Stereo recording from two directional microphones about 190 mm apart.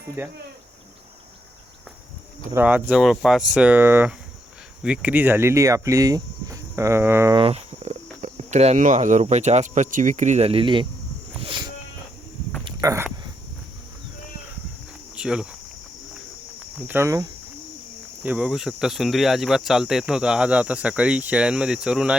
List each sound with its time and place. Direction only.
0.2 s speech: 10° right (ahead or behind)
2.5 s speech: 10° right (ahead or behind)
7.3 s speech: 30° right (ahead or behind)
11.4 s sheep: 25° right (ahead or behind)
12.6 s a sound: 15° right (ahead or behind)
15.1 s cricket: 5° right (ahead or behind)
16.7 s speech: 10° right (ahead or behind)